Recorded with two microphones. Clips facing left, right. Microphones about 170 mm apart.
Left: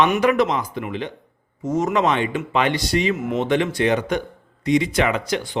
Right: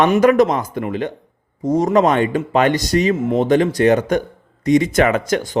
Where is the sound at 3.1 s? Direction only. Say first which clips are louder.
Right 5 dB; 30° right (ahead or behind).